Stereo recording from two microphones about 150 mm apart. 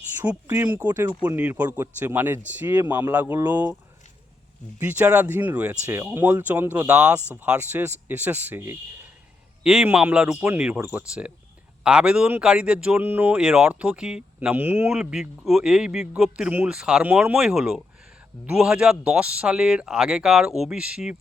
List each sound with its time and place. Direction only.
0.2 s speech: 15° right (ahead or behind)
4.8 s speech: 10° right (ahead or behind)
9.6 s speech: 5° right (ahead or behind)